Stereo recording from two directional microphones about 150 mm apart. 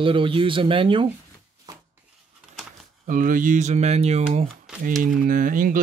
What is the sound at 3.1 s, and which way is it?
Speech, 65° right (ahead or behind).